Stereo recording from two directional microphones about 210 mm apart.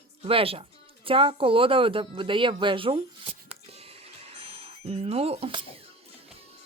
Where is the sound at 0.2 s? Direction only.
25° right (ahead or behind).